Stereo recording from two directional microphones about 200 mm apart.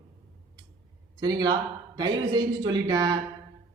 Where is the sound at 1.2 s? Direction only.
20° right (ahead or behind).